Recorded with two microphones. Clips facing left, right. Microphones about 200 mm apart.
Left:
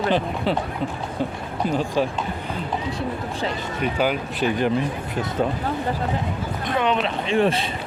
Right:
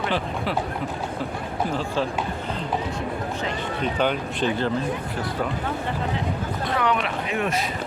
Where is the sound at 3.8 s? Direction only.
5° left (ahead or behind).